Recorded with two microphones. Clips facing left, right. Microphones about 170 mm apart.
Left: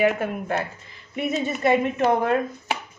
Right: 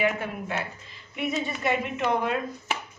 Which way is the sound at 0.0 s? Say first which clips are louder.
Left 5 dB; 45° left (ahead or behind).